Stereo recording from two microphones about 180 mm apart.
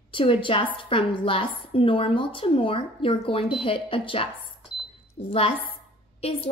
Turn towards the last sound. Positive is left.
turn(degrees=35)  # may be behind; listen again after turning